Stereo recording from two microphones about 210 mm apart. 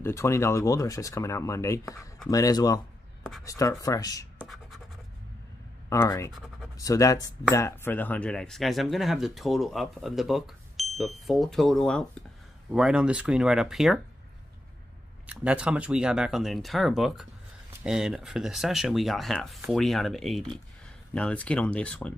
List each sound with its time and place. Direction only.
0.0 s speech: 15° left (ahead or behind)
4.4 s scratch: centre (ahead or behind)
5.9 s speech: 15° left (ahead or behind)
6.3 s a sound: centre (ahead or behind)
6.8 s speech: 15° left (ahead or behind); by 14.0 s centre (ahead or behind)
15.2 s speech: 5° right (ahead or behind)